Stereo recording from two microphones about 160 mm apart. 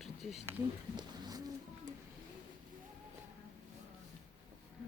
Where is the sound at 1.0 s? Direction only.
25° right (ahead or behind).